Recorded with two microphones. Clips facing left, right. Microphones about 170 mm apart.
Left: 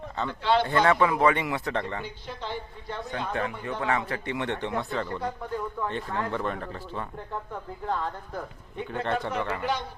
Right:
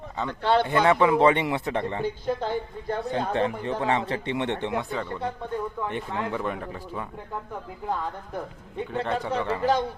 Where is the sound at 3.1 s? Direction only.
30° right (ahead or behind); by 9.2 s 5° right (ahead or behind).